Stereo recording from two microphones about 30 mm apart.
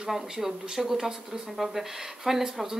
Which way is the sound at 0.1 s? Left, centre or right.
Centre.